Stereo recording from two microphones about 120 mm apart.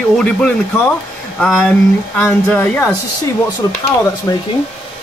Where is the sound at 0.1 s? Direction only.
10° left (ahead or behind).